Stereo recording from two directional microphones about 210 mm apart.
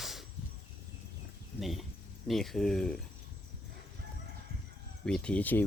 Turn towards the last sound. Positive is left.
turn(degrees=10)  # may be behind; listen again after turning